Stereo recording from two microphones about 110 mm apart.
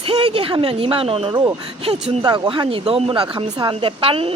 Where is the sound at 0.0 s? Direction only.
60° right (ahead or behind).